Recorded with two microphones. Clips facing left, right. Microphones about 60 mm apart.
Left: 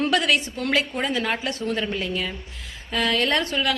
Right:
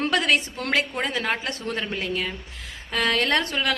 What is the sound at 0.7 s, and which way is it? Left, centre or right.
Speech, right.